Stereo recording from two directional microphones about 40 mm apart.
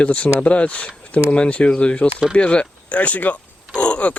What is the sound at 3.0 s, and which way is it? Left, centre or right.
Speech, left.